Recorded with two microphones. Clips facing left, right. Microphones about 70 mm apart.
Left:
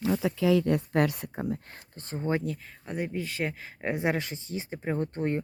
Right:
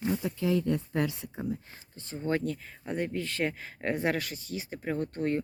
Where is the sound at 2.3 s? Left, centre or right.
Centre.